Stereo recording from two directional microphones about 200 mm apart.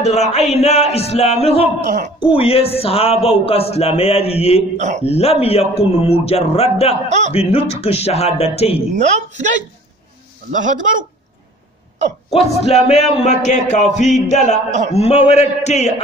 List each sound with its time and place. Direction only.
0.0 s music: 35° left (ahead or behind)
2.3 s a man's voice: 30° left (ahead or behind)
4.7 s a woman's voice: 35° right (ahead or behind)
5.0 s a man's voice: 30° left (ahead or behind)
7.1 s a woman's voice: 35° right (ahead or behind)
7.3 s music: 30° left (ahead or behind)
8.9 s a woman's voice: 35° right (ahead or behind)
10.5 s a woman's voice: 40° right (ahead or behind)
12.3 s music: 30° left (ahead or behind)
14.7 s a woman's voice: 35° right (ahead or behind)
15.0 s music: 30° left (ahead or behind)